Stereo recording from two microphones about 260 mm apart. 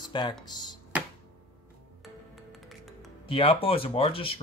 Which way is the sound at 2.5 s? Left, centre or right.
Centre.